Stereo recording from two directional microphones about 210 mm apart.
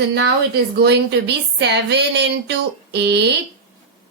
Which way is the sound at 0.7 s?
55° right (ahead or behind).